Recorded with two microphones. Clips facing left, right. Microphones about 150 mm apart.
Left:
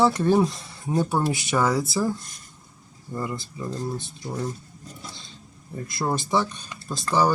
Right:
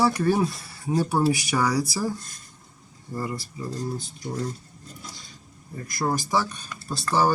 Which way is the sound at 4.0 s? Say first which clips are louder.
Even; 25° left (ahead or behind).